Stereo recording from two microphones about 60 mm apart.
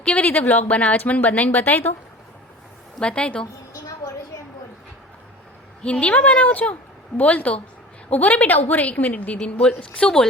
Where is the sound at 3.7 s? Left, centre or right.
Left.